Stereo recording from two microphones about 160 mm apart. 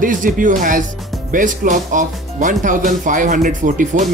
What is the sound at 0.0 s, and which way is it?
Speech, 55° right (ahead or behind).